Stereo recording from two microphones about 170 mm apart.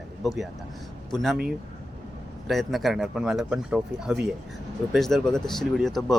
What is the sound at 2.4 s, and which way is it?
Speech, centre (ahead or behind).